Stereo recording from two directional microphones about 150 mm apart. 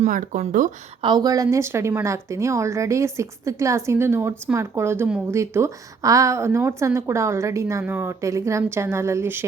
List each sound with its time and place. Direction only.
0.0 s speech: 60° right (ahead or behind)
1.0 s speech: 25° right (ahead or behind)